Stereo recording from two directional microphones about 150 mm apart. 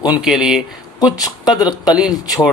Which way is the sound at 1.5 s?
25° left (ahead or behind).